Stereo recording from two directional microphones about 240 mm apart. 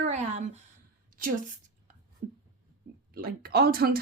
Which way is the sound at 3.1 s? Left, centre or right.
Right.